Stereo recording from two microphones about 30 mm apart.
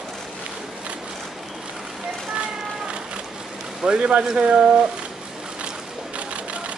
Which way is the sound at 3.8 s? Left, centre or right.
Right.